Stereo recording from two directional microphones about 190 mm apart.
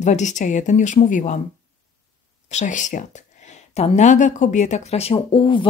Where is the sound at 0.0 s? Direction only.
40° left (ahead or behind).